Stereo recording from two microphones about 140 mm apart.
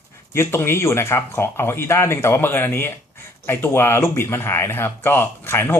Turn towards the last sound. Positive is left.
turn(degrees=15)  # may be behind; listen again after turning